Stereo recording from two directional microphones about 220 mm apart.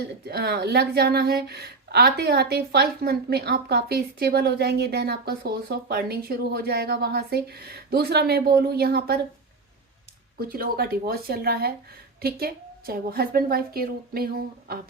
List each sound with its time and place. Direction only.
0.3 s speech: 45° right (ahead or behind)
10.5 s speech: 45° right (ahead or behind)